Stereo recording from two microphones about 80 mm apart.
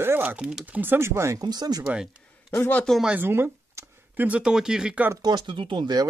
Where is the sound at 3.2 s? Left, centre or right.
Right.